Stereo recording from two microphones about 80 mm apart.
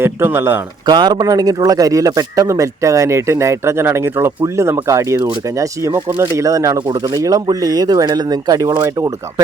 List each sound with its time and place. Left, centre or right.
0.0 s speech: right
0.9 s a man's voice: right
6.4 s speech: right
6.7 s speech: right